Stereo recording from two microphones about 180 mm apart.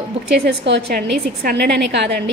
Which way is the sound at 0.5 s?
70° right (ahead or behind).